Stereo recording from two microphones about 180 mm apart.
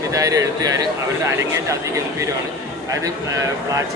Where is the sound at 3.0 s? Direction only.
15° right (ahead or behind).